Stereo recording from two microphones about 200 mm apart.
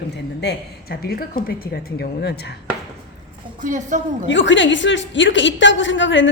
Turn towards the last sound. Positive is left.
turn(degrees=65)  # may be behind; listen again after turning